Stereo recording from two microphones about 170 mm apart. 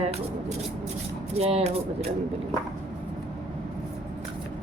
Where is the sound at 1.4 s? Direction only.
35° right (ahead or behind).